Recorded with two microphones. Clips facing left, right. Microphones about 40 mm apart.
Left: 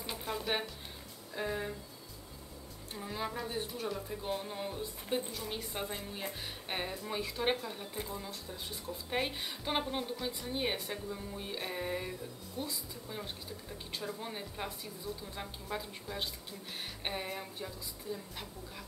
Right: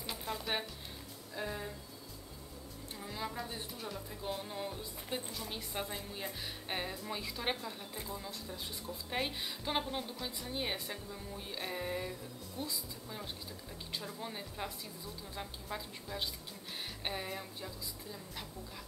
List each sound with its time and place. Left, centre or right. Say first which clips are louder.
0.0 s music: left 2 dB; centre
1.3 s speech: left 4 dB; centre
3.0 s a woman's voice: left 3 dB; centre
10.1 s a woman's voice: left 3 dB; centre